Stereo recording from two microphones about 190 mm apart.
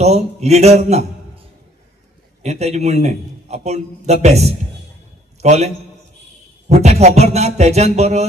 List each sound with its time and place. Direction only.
0.0 s a man's voice: 35° right (ahead or behind)
2.4 s a man's voice: 35° right (ahead or behind)
6.8 s a man's voice: 35° right (ahead or behind)